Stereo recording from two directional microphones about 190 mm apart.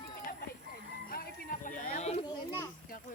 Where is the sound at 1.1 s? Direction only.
50° left (ahead or behind).